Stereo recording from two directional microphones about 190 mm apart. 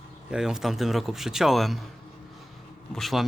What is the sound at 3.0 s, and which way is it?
Speech, centre (ahead or behind).